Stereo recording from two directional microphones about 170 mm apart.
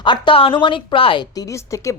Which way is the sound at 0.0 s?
30° left (ahead or behind).